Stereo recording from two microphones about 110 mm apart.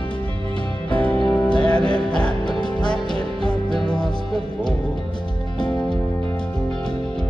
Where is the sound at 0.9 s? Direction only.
10° left (ahead or behind).